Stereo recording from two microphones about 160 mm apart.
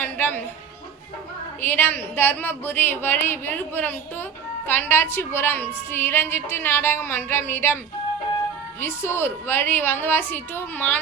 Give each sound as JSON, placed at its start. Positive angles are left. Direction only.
{"t": 0.0, "sound": "music", "side_deg": 10}
{"t": 1.6, "sound": "a woman's voice", "side_deg": 10}
{"t": 8.8, "sound": "a woman's voice", "side_deg": 15}